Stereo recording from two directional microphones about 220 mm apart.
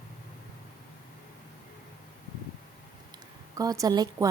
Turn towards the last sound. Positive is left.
turn(degrees=-15)  # may be behind; listen again after turning